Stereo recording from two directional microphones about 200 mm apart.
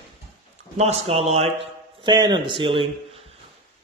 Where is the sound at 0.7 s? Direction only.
30° right (ahead or behind).